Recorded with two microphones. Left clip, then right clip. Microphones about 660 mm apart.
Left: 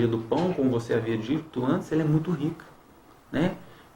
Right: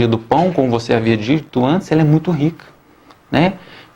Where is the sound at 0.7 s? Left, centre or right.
Right.